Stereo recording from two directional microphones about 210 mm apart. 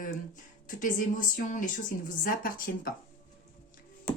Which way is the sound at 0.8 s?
40° left (ahead or behind).